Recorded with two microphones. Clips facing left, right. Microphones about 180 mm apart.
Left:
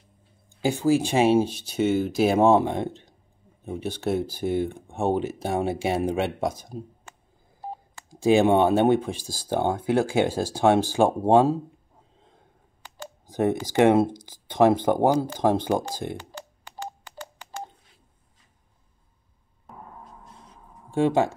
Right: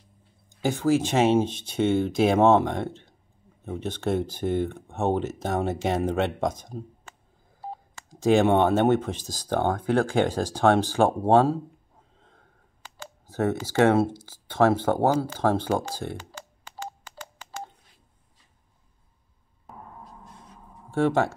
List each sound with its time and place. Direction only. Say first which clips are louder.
0.6 s speech: left 1 dB; 15° left (ahead or behind)
12.9 s a sound: left 3 dB; 15° left (ahead or behind)
19.7 s gong: even; centre (ahead or behind)
20.9 s speech: left 1 dB; 15° left (ahead or behind)